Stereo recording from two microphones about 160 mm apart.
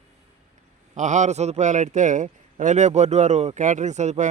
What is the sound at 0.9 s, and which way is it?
A man's voice, 50° right (ahead or behind).